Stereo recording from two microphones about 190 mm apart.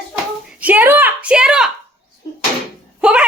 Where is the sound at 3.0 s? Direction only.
5° right (ahead or behind).